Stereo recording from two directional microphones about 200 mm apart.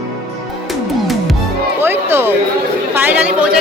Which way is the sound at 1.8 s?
10° right (ahead or behind).